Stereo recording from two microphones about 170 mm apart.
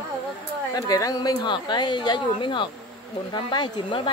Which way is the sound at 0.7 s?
20° left (ahead or behind).